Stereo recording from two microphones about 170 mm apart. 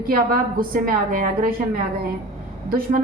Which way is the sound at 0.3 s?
55° right (ahead or behind).